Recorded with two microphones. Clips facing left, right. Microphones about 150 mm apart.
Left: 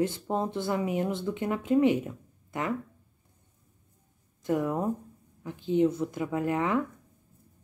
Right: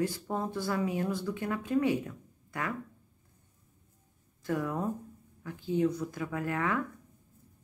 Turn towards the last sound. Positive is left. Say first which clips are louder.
# left 5 dB
turn(degrees=20)  # may be behind; listen again after turning